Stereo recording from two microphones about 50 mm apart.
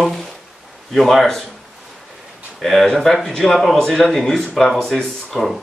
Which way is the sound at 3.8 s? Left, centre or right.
Centre.